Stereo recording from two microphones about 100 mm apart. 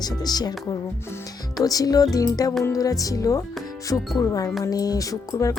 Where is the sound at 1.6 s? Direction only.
35° left (ahead or behind).